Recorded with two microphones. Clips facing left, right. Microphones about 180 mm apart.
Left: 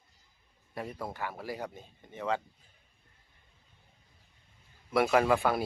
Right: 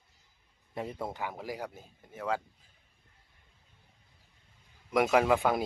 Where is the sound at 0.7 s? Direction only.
20° right (ahead or behind).